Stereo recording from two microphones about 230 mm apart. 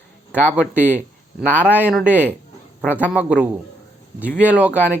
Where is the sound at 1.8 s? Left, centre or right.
Centre.